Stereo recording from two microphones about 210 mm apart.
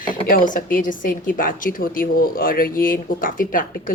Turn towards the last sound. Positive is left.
turn(degrees=40)  # may be behind; listen again after turning